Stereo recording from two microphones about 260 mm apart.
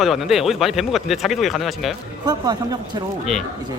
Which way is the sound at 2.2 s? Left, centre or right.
Centre.